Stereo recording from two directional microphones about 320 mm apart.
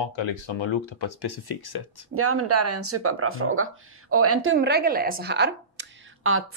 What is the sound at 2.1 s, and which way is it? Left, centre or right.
Speech, right.